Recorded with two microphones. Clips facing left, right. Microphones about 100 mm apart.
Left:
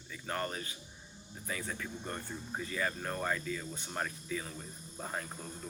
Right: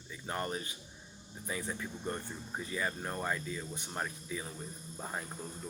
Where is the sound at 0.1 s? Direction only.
15° right (ahead or behind).